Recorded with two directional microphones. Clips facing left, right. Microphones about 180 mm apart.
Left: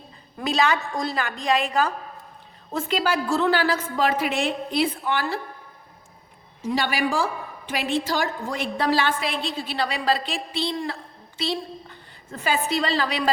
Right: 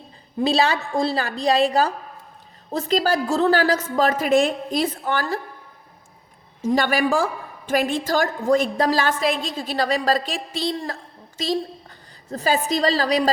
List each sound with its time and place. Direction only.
0.3 s a woman's voice: 30° right (ahead or behind)
6.6 s a woman's voice: 50° right (ahead or behind)